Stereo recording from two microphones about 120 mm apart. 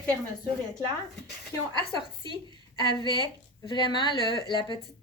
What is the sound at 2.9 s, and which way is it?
A woman's voice, 40° left (ahead or behind).